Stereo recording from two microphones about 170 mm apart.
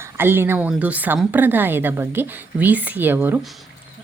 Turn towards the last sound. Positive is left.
turn(degrees=-10)  # may be behind; listen again after turning